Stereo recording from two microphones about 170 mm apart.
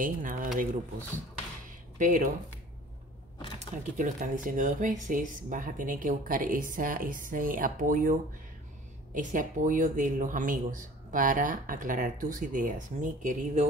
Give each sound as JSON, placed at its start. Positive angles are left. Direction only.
{"t": 0.0, "sound": "speech", "side_deg": -50}
{"t": 2.0, "sound": "speech", "side_deg": -50}
{"t": 3.5, "sound": "speech", "side_deg": -50}